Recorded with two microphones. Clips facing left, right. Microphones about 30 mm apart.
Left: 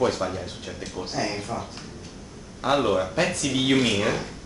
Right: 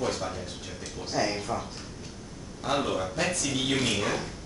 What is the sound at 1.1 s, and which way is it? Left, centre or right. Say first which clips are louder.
Speech: right 1 dB; centre.